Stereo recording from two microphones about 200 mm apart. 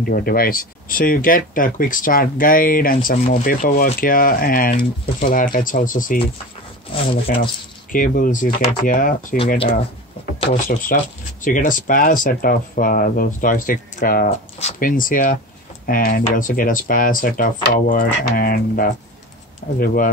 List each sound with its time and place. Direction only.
0.0 s speech: 45° left (ahead or behind)
10.5 s speech: 40° left (ahead or behind)